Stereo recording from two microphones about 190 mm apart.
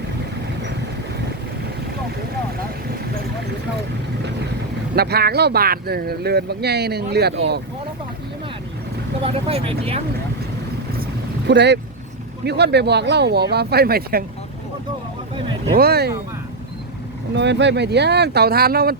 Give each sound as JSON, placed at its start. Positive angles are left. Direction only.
{"t": 4.9, "sound": "speech", "side_deg": -55}
{"t": 9.2, "sound": "speech", "side_deg": -30}
{"t": 11.4, "sound": "speech", "side_deg": -65}
{"t": 15.7, "sound": "speech", "side_deg": -55}
{"t": 17.3, "sound": "speech", "side_deg": -65}